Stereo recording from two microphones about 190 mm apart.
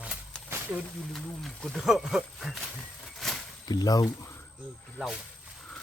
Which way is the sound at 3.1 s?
Centre (ahead or behind).